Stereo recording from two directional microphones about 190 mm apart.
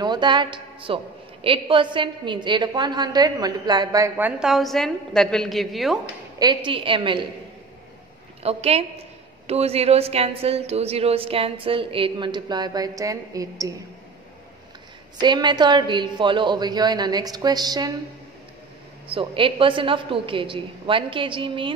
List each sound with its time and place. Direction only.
0.0 s a woman's voice: 20° right (ahead or behind)
4.4 s a woman's voice: centre (ahead or behind)
6.4 s a woman's voice: 25° right (ahead or behind)
8.4 s a woman's voice: 30° right (ahead or behind)
15.1 s a woman's voice: 25° right (ahead or behind)
19.0 s a woman's voice: 30° right (ahead or behind)